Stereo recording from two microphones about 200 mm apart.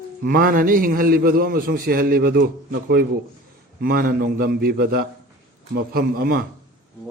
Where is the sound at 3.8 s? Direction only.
45° right (ahead or behind).